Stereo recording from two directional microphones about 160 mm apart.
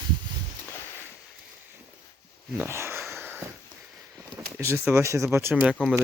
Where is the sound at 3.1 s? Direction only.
15° right (ahead or behind).